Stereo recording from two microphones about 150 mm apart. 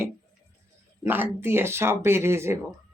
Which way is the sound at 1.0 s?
15° right (ahead or behind).